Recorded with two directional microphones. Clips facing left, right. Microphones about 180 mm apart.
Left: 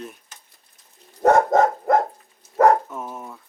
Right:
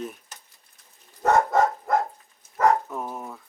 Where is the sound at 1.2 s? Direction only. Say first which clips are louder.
Left 4 dB; 50° left (ahead or behind).